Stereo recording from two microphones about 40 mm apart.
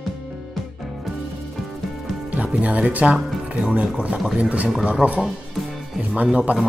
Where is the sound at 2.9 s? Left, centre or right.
Right.